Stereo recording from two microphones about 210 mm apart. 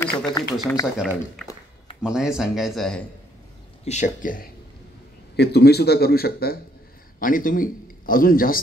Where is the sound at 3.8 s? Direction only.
35° left (ahead or behind).